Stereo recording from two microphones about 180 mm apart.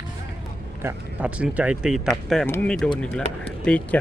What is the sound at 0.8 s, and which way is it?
Speech, 5° right (ahead or behind).